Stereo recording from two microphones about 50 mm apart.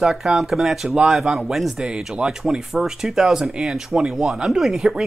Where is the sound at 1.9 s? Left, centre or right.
Centre.